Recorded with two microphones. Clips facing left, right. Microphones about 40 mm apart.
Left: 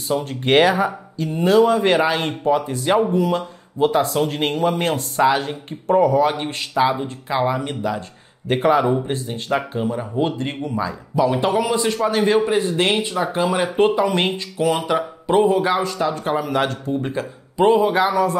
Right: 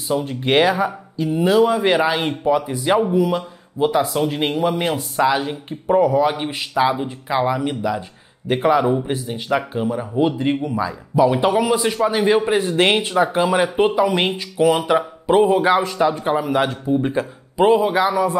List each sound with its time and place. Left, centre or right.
0.1 s a man's voice: centre
8.5 s speech: centre
9.0 s a man's voice: centre
12.4 s speech: right
13.7 s a man's voice: centre
17.6 s speech: centre
18.1 s a man's voice: centre